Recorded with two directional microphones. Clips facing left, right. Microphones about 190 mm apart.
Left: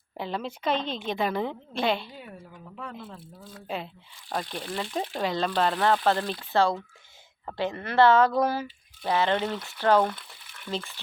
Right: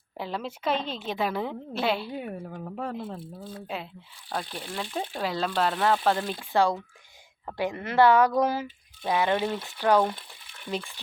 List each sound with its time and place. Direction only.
0.2 s a woman's voice: 5° right (ahead or behind)
2.0 s speech: 60° right (ahead or behind); by 3.6 s 30° right (ahead or behind)
4.4 s a woman's voice: centre (ahead or behind)